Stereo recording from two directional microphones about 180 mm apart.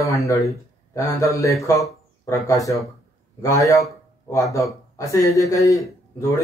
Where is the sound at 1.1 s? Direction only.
15° left (ahead or behind).